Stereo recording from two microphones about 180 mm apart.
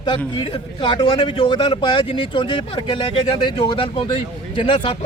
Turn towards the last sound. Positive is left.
turn(degrees=30)  # may be behind; listen again after turning